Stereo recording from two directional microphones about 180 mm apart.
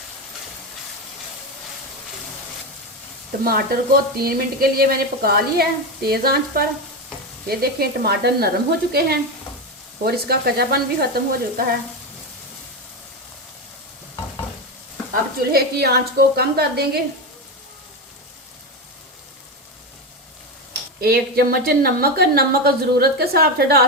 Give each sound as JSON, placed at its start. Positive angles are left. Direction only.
{"t": 3.4, "sound": "speech", "side_deg": -55}
{"t": 15.1, "sound": "speech", "side_deg": -60}
{"t": 21.0, "sound": "speech", "side_deg": -60}